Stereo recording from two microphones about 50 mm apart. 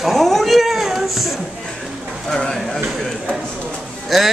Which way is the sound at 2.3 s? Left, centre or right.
Centre.